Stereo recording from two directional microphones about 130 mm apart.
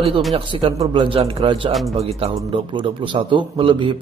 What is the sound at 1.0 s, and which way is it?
Speech, 45° right (ahead or behind).